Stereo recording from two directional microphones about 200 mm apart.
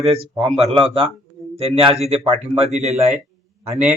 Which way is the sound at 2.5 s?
Centre (ahead or behind).